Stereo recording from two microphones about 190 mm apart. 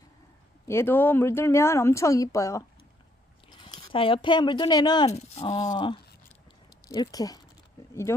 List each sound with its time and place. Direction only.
0.6 s speech: 15° left (ahead or behind)
5.0 s speech: 35° left (ahead or behind)